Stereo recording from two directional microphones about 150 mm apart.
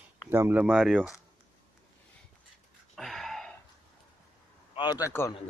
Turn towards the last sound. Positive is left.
turn(degrees=25)  # may be behind; listen again after turning